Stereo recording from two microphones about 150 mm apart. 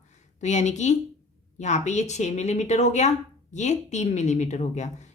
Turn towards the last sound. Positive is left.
turn(degrees=50)  # may be behind; listen again after turning